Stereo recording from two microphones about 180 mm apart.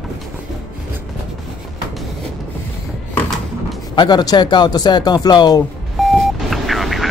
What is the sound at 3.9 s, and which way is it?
Speech, 25° left (ahead or behind).